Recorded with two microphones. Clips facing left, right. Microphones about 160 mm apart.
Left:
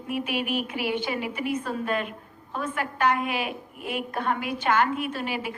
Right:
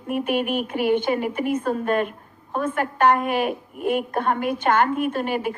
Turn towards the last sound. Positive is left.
turn(degrees=-50)  # may be behind; listen again after turning